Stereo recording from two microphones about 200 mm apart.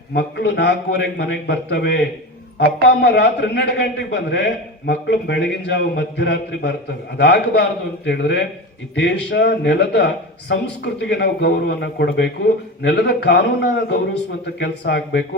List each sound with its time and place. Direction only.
0.1 s a man's voice: 55° left (ahead or behind)